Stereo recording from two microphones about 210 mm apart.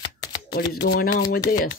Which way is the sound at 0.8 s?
45° left (ahead or behind).